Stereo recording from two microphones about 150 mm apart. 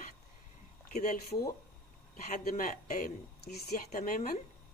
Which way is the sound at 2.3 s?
55° left (ahead or behind).